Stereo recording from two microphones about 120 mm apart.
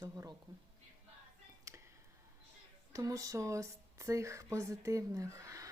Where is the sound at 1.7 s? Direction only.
25° right (ahead or behind).